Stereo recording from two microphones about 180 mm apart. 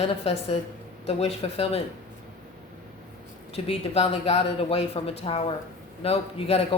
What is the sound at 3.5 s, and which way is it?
A woman's voice, 35° left (ahead or behind).